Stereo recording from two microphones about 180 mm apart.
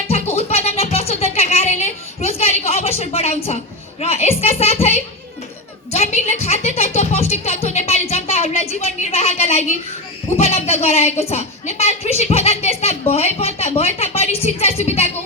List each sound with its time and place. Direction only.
0.1 s music: 35° left (ahead or behind)
4.0 s a woman's voice: 35° left (ahead or behind)
5.9 s music: 35° left (ahead or behind)
10.3 s a woman's voice: 35° left (ahead or behind)